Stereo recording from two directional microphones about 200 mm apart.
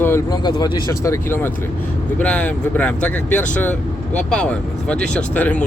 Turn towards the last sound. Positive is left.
turn(degrees=5)  # may be behind; listen again after turning